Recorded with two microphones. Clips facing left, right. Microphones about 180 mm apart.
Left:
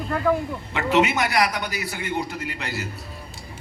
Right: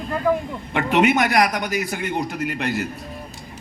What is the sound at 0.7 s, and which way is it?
A man's voice, 55° right (ahead or behind).